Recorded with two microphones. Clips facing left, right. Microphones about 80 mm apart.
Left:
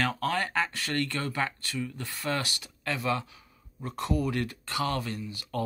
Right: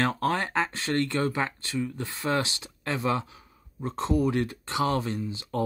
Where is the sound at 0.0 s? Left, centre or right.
Right.